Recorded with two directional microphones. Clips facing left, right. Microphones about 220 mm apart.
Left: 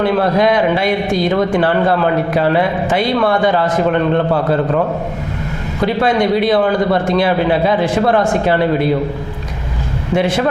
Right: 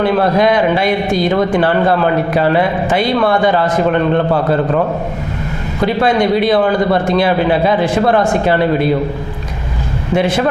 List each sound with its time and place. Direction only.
0.0 s a man's voice: 20° right (ahead or behind)